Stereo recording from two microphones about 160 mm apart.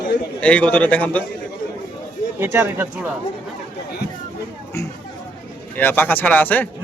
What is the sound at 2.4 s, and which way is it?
Speech, 15° right (ahead or behind).